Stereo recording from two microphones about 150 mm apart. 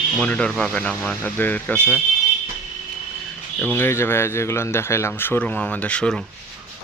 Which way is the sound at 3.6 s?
15° left (ahead or behind).